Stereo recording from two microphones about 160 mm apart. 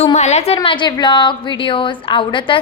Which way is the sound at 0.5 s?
30° left (ahead or behind).